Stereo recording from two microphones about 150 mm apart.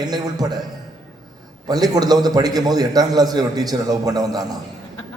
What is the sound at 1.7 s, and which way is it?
A man's voice, 25° right (ahead or behind).